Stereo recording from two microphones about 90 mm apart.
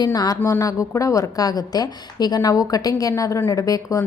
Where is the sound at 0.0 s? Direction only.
45° left (ahead or behind).